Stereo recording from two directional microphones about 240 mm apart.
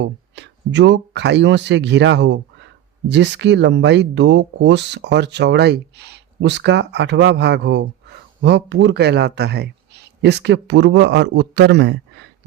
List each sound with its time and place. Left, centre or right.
0.0 s speech: right